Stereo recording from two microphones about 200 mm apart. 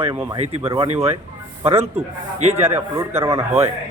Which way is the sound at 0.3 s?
30° right (ahead or behind).